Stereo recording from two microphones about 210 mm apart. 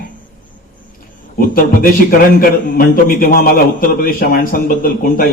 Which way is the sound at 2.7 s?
45° left (ahead or behind).